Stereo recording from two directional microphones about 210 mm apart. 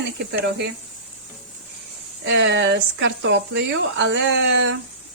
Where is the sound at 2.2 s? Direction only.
55° right (ahead or behind).